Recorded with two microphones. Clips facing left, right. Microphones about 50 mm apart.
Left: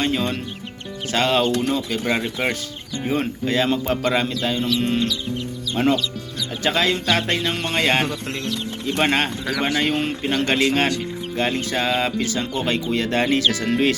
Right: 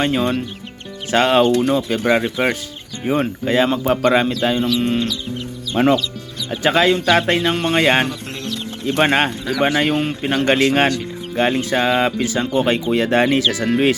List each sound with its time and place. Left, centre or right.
0.0 s speech: centre
1.1 s speech: right
4.6 s speech: centre
5.7 s speech: right
9.8 s speech: centre
10.3 s speech: right